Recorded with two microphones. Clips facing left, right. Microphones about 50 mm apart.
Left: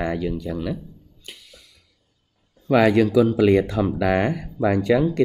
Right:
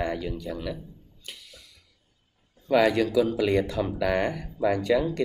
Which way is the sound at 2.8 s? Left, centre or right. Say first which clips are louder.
Left 6 dB; left.